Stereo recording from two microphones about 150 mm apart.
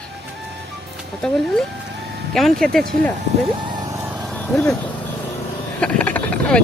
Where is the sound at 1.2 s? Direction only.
5° left (ahead or behind).